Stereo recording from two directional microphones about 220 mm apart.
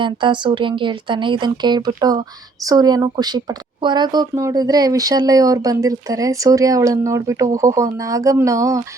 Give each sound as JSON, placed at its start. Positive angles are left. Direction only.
{"t": 0.0, "sound": "speech", "side_deg": -20}